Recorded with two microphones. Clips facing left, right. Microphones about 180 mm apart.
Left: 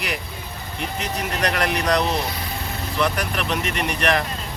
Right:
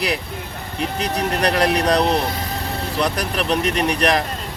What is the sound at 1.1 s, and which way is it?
Speech, 35° right (ahead or behind).